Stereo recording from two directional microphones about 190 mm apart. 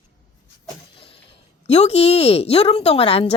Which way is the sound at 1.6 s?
35° left (ahead or behind).